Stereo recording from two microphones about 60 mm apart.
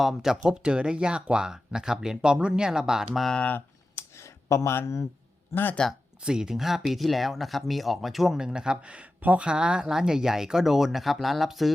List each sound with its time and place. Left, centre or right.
0.0 s speech: centre
3.9 s a sound: left
5.5 s speech: left
6.2 s speech: centre